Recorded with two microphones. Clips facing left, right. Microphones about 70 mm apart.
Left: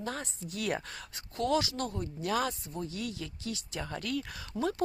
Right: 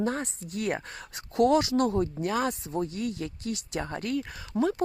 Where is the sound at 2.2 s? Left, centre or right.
Right.